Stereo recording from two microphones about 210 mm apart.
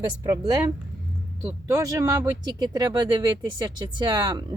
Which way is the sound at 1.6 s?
15° right (ahead or behind).